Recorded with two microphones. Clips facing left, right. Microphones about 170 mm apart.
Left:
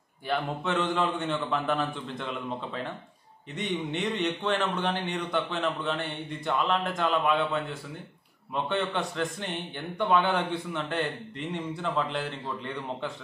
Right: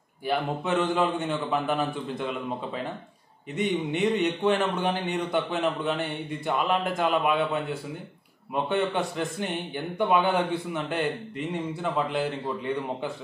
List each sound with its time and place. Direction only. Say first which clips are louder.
0.3 s speech: right 3 dB; 10° right (ahead or behind)